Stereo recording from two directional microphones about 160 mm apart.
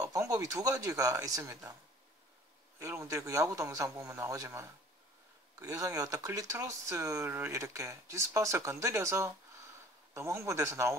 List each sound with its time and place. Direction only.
0.0 s speech: 20° right (ahead or behind)
2.8 s a man's voice: 15° right (ahead or behind)